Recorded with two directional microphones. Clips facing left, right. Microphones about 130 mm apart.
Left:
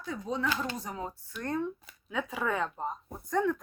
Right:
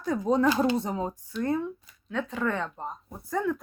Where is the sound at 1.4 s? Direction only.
5° right (ahead or behind).